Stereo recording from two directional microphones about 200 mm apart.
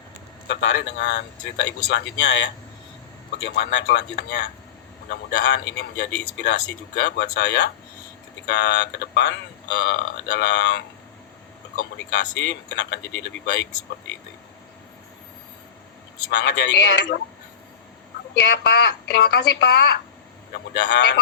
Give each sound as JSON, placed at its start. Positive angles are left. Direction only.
{"t": 0.4, "sound": "a man's voice", "side_deg": 65}
{"t": 12.1, "sound": "a man's voice", "side_deg": 60}
{"t": 16.3, "sound": "a man's voice", "side_deg": 60}
{"t": 18.3, "sound": "a man's voice", "side_deg": 55}